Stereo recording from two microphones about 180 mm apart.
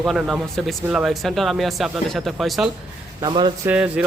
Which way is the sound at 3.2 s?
25° right (ahead or behind).